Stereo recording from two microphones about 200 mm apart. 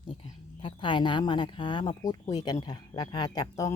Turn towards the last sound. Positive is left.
turn(degrees=20)  # may be behind; listen again after turning